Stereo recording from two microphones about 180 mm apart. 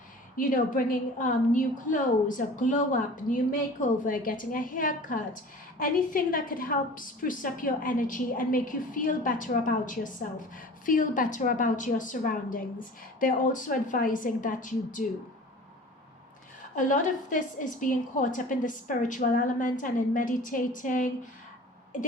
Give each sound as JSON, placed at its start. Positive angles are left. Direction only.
{"t": 0.3, "sound": "a woman's voice", "side_deg": 45}
{"t": 16.7, "sound": "a woman's voice", "side_deg": 45}